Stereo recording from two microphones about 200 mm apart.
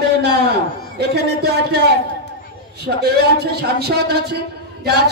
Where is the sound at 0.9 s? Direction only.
55° right (ahead or behind).